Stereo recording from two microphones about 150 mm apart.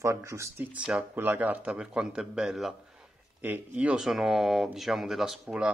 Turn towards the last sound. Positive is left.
turn(degrees=-5)  # may be behind; listen again after turning